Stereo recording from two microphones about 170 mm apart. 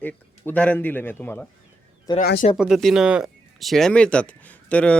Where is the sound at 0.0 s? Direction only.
10° left (ahead or behind).